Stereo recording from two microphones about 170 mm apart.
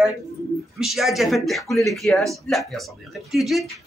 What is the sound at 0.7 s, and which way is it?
Speech, centre (ahead or behind).